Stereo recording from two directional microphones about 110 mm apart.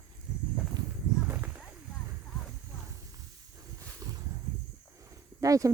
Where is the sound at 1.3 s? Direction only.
20° right (ahead or behind).